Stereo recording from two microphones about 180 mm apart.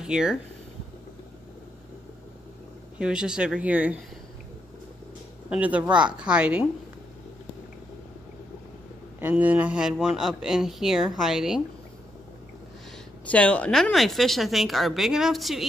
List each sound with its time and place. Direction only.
0.0 s speech: 5° right (ahead or behind)
3.0 s speech: 5° right (ahead or behind)
5.5 s speech: 5° right (ahead or behind)
9.2 s speech: 10° right (ahead or behind)
13.2 s speech: 5° left (ahead or behind)